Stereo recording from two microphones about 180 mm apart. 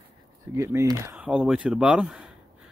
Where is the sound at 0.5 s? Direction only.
15° right (ahead or behind).